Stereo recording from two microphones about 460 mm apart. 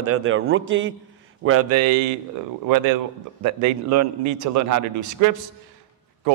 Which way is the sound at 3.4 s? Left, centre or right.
Right.